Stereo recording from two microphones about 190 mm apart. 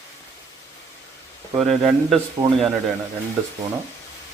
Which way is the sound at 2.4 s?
20° right (ahead or behind).